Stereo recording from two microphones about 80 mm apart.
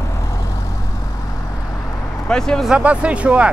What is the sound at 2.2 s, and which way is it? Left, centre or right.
Vehicle, centre.